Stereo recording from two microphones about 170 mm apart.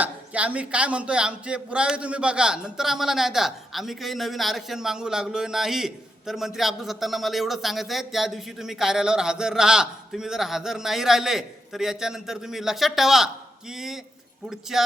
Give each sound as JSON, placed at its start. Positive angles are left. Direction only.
{"t": 0.0, "sound": "a man's voice", "side_deg": -10}